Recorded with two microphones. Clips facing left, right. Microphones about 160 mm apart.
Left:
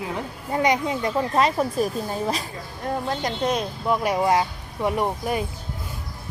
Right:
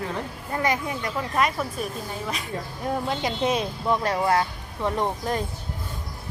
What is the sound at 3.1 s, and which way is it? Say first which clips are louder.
Speech: left 1 dB; 5° right (ahead or behind).